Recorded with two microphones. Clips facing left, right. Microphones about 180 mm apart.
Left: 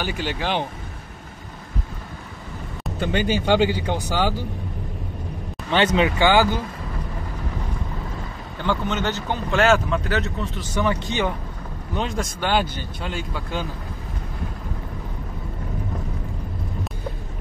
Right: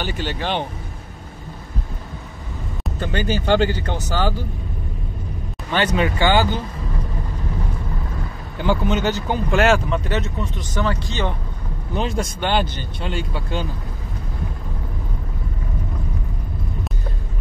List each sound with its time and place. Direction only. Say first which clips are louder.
0.0 s speech: right 1 dB; 10° left (ahead or behind)
2.8 s speech: left 2 dB; 10° left (ahead or behind)
5.7 s speech: left 1 dB; 20° left (ahead or behind)
8.6 s speech: right 4 dB; 10° right (ahead or behind)
10.8 s speech: left 1 dB; 15° left (ahead or behind)
11.9 s speech: right 3 dB; centre (ahead or behind)